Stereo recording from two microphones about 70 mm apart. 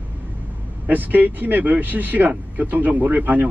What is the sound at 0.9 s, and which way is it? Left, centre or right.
Speech, right.